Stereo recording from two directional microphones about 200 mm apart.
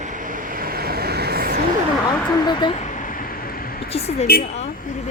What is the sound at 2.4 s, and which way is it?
Speech, 20° left (ahead or behind).